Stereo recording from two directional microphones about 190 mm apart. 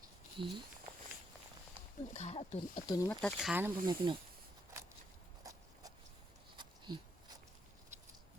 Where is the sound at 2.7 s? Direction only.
20° left (ahead or behind).